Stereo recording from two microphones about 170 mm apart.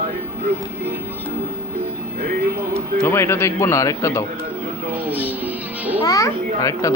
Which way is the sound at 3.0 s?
15° left (ahead or behind).